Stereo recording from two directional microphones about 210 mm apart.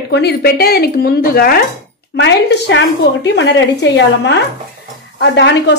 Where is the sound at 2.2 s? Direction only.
55° left (ahead or behind).